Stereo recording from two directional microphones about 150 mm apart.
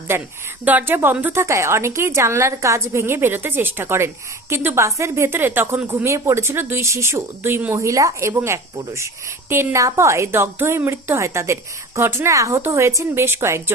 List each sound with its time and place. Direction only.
0.1 s a woman's voice: 15° right (ahead or behind)